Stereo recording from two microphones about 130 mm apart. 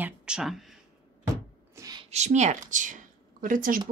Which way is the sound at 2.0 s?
60° right (ahead or behind).